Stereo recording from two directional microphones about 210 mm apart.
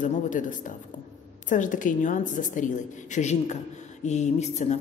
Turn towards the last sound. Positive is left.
turn(degrees=30)  # may be behind; listen again after turning